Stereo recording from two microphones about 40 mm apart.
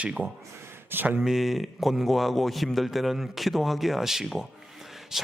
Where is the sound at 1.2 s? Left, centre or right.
Centre.